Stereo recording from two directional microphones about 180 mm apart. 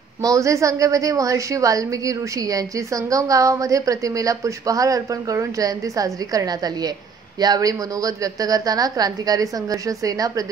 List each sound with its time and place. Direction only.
0.2 s a woman's voice: 20° right (ahead or behind)